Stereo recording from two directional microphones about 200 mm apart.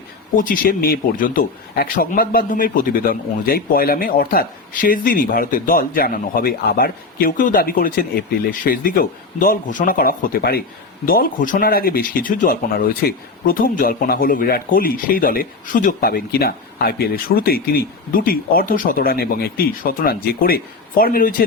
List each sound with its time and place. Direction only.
0.3 s speech: 45° left (ahead or behind)